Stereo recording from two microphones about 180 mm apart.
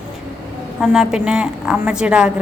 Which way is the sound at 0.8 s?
5° right (ahead or behind).